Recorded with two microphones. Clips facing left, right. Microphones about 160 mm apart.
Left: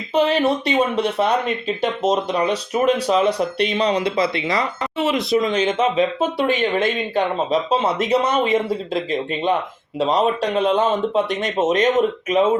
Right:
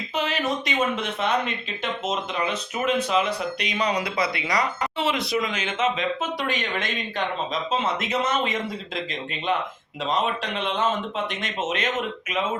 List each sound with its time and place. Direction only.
0.1 s speech: 30° left (ahead or behind)
5.4 s speech: 35° left (ahead or behind)
10.0 s speech: 35° left (ahead or behind)